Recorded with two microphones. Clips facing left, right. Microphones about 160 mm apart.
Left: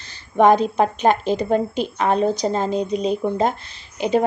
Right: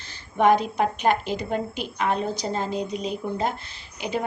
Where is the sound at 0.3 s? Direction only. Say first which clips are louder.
Left 5 dB; 25° left (ahead or behind).